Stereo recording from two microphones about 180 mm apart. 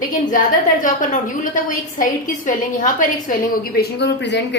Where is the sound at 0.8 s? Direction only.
45° left (ahead or behind).